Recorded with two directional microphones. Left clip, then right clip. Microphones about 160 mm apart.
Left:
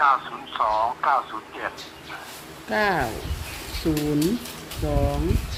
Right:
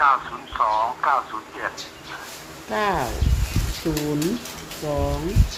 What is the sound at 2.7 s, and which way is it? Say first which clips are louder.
Speech: even; 20° left (ahead or behind).